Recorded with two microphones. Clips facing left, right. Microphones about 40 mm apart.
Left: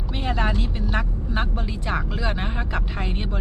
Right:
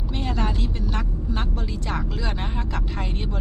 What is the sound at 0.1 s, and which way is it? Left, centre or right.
Speech, centre.